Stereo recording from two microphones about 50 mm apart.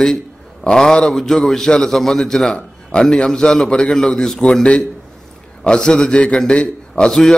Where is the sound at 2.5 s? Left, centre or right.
Centre.